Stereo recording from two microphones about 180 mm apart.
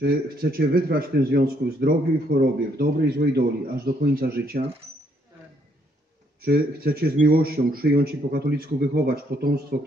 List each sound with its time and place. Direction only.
0.0 s speech: 55° right (ahead or behind)
6.4 s speech: 60° right (ahead or behind)